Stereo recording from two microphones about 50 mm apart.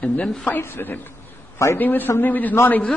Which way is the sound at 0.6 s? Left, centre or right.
Left.